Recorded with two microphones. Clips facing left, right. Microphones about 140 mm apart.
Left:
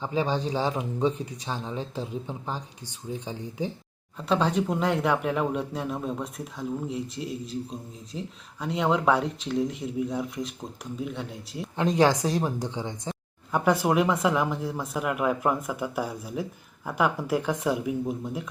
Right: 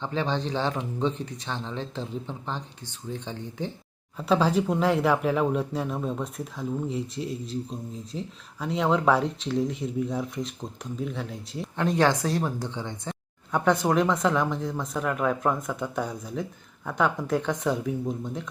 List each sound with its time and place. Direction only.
0.0 s speech: 10° left (ahead or behind)
4.2 s speech: 5° right (ahead or behind)
11.8 s speech: 15° left (ahead or behind)